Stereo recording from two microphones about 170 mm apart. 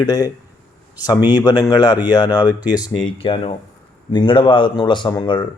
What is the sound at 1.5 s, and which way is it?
Speech, 25° left (ahead or behind).